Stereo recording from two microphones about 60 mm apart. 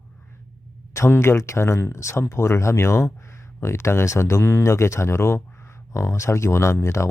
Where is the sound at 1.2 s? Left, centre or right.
Left.